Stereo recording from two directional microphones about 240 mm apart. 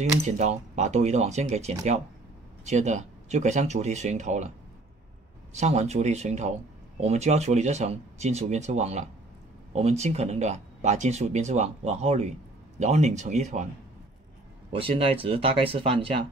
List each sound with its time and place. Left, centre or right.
0.4 s speech: right
5.6 s speech: right
14.7 s speech: right